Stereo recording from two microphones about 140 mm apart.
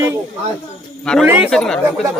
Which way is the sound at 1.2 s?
10° right (ahead or behind).